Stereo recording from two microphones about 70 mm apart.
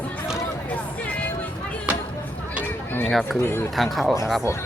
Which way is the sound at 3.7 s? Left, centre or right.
Centre.